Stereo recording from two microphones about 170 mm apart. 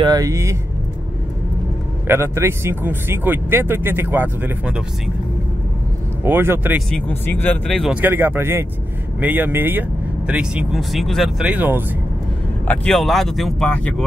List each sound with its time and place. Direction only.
0.0 s speech: 20° right (ahead or behind)
2.0 s speech: 15° right (ahead or behind)
6.2 s speech: 15° right (ahead or behind)
6.9 s speech: 10° left (ahead or behind)
7.9 s speech: 10° right (ahead or behind)
12.6 s speech: 5° left (ahead or behind)